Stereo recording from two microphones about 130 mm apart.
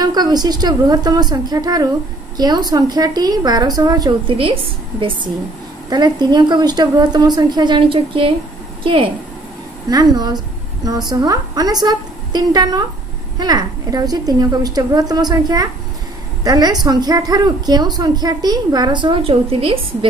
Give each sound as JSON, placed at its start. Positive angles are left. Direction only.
{"t": 0.0, "sound": "a woman's voice", "side_deg": -30}
{"t": 5.9, "sound": "a woman's voice", "side_deg": -35}
{"t": 9.8, "sound": "a woman's voice", "side_deg": -30}